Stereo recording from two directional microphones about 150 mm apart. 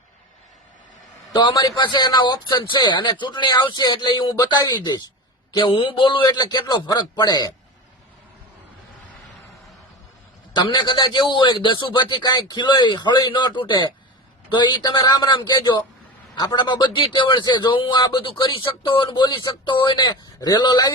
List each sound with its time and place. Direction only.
1.3 s a man's voice: 30° left (ahead or behind)
10.5 s a man's voice: 30° left (ahead or behind)